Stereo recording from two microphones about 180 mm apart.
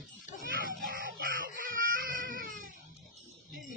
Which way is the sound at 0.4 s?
50° right (ahead or behind).